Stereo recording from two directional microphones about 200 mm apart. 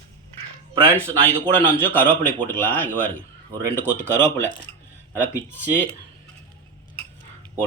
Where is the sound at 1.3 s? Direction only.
25° right (ahead or behind).